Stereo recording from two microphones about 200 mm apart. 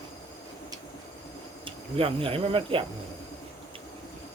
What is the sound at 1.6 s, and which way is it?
Speech, 25° right (ahead or behind).